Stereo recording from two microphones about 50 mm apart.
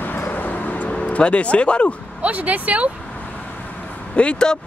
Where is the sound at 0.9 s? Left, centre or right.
Left.